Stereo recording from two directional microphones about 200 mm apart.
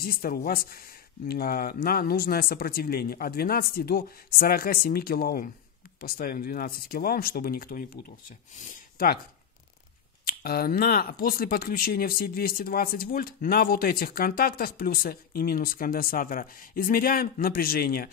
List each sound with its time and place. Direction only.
0.0 s speech: 50° left (ahead or behind)
10.2 s speech: 50° left (ahead or behind)